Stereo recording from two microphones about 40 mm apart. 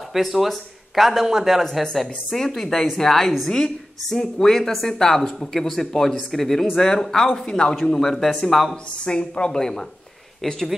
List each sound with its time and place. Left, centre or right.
0.1 s speech: centre
1.7 s a woman's voice: centre
9.0 s a woman's voice: left